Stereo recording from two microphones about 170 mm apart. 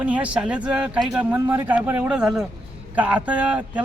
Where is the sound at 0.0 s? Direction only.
10° right (ahead or behind).